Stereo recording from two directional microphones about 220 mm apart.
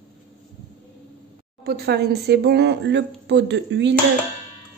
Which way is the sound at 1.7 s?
45° right (ahead or behind).